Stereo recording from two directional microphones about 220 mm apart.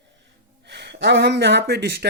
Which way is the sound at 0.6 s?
50° right (ahead or behind).